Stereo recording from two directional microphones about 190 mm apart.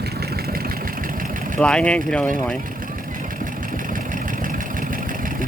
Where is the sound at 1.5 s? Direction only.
5° left (ahead or behind).